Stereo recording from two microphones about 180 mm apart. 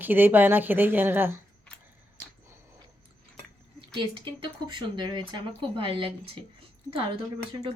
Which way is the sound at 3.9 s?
25° right (ahead or behind).